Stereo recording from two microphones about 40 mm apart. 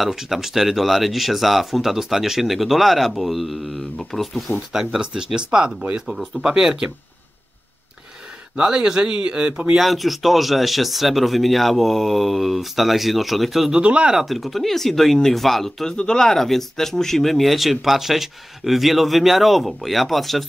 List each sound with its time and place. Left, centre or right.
0.1 s speech: centre
5.0 s speech: centre
8.5 s speech: centre
9.8 s speech: centre
13.8 s speech: right
14.1 s speech: centre
16.0 s speech: centre